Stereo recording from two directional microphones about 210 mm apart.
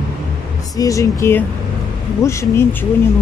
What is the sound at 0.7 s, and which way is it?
Speech, 15° left (ahead or behind).